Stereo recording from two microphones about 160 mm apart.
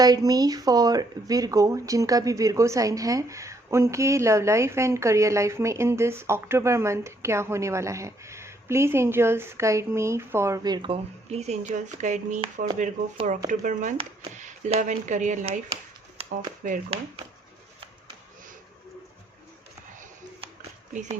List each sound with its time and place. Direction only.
0.0 s speech: 25° right (ahead or behind)
10.9 s speech: 40° right (ahead or behind)
12.6 s speech: 60° right (ahead or behind)
16.2 s a sound: 35° right (ahead or behind)
16.6 s speech: 50° right (ahead or behind)